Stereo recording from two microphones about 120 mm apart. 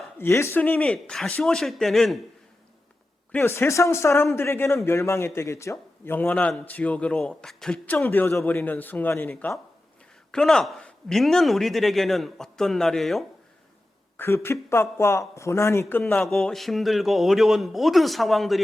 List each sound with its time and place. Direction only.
0.2 s a man's voice: 20° left (ahead or behind); by 2.2 s centre (ahead or behind)
3.3 s speech: 20° left (ahead or behind)
10.3 s a man's voice: 5° left (ahead or behind)
14.2 s speech: 20° left (ahead or behind)
16.2 s a man's voice: 5° left (ahead or behind)